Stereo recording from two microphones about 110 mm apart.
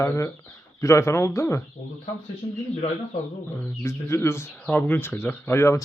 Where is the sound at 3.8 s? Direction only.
25° left (ahead or behind).